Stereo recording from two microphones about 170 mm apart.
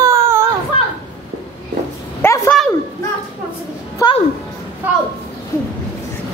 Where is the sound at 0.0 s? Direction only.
15° right (ahead or behind).